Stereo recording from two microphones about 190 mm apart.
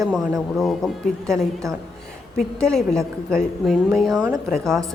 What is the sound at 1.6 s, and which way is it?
Speech, 15° right (ahead or behind).